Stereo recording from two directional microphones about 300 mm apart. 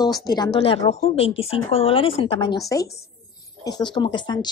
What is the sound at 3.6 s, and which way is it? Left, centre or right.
Speech, centre.